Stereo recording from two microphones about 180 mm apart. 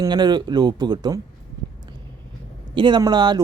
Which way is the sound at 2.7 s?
25° right (ahead or behind).